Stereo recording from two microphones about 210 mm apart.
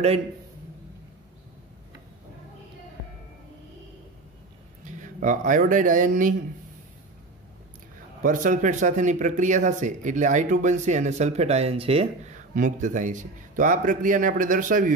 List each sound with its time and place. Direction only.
4.8 s speech: 35° right (ahead or behind)
8.2 s speech: 40° right (ahead or behind)